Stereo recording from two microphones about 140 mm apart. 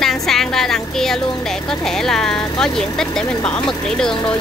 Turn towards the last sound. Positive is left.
turn(degrees=5)  # may be behind; listen again after turning